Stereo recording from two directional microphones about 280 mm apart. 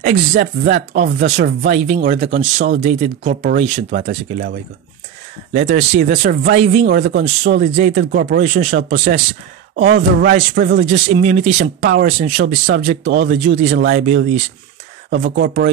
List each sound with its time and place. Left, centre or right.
0.0 s speech: right
5.8 s speech: right
10.8 s speech: right
11.8 s speech: right
12.1 s speech: right
15.0 s speech: right